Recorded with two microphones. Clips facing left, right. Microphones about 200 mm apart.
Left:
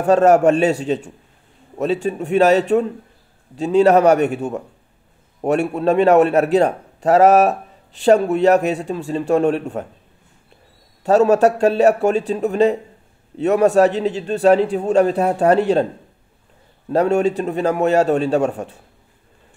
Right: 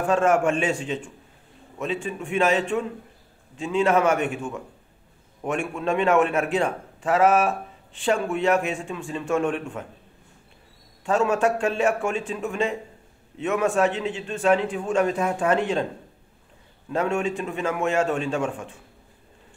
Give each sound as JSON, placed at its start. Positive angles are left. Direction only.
{"t": 0.0, "sound": "a man's voice", "side_deg": 40}
{"t": 11.1, "sound": "a man's voice", "side_deg": 40}
{"t": 16.9, "sound": "a man's voice", "side_deg": 40}